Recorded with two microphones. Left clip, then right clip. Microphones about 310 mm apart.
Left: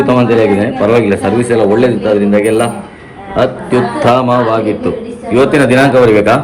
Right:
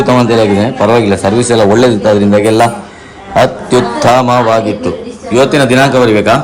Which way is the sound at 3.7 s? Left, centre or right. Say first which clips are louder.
Right 1 dB; centre.